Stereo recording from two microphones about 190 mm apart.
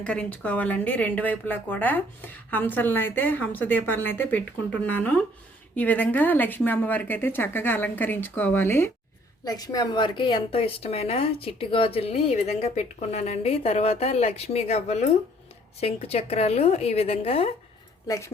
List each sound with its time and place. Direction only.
0.0 s a woman's voice: 5° left (ahead or behind); by 17.5 s 30° left (ahead or behind)